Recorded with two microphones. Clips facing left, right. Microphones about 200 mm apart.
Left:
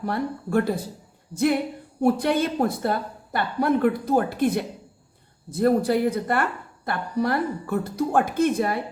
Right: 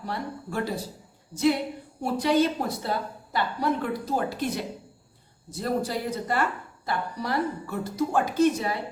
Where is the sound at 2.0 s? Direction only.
55° left (ahead or behind).